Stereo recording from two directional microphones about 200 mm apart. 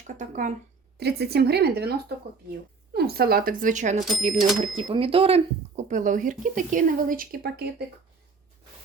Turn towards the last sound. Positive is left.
turn(degrees=-50)  # may be behind; listen again after turning